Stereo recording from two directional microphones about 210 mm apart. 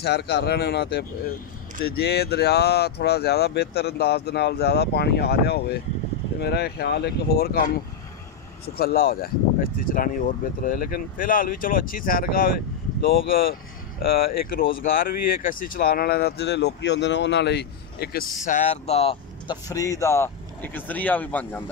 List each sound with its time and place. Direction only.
0.0 s speech: 50° left (ahead or behind)
18.4 s speech: 35° left (ahead or behind); by 21.6 s 10° left (ahead or behind)